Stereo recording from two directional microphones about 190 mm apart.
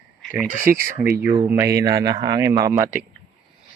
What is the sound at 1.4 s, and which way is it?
A man's voice, 15° right (ahead or behind).